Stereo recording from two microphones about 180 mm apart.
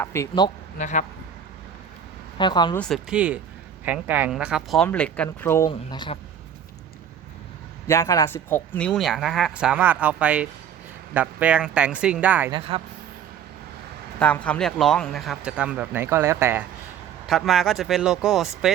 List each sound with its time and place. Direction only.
0.0 s speech: 15° left (ahead or behind)
0.8 s speech: 40° left (ahead or behind)
2.4 s speech: 25° left (ahead or behind)
3.1 s speech: 5° right (ahead or behind); by 6.1 s 25° left (ahead or behind)
7.9 s speech: 20° left (ahead or behind); by 12.5 s 10° right (ahead or behind)
12.5 s speech: 30° right (ahead or behind)
14.2 s speech: 5° left (ahead or behind); by 16.6 s 15° right (ahead or behind)
17.2 s speech: centre (ahead or behind)